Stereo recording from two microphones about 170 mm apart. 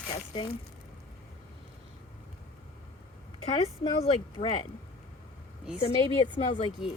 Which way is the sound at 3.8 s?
35° left (ahead or behind).